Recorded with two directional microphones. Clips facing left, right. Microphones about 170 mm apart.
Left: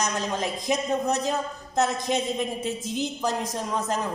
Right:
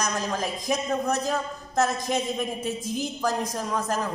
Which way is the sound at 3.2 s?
20° left (ahead or behind).